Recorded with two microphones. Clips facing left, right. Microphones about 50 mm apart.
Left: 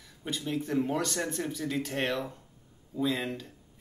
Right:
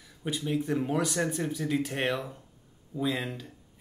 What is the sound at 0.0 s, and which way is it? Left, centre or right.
Speech, centre.